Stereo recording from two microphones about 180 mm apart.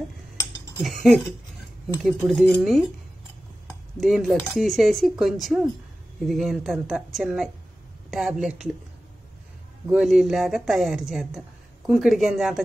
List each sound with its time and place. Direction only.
0.8 s speech: centre (ahead or behind)
4.0 s speech: centre (ahead or behind)
9.9 s speech: 5° right (ahead or behind)